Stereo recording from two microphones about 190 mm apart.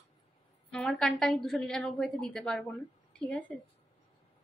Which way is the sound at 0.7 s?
5° left (ahead or behind).